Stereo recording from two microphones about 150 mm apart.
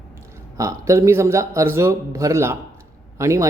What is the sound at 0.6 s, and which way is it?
A man's voice, 20° right (ahead or behind).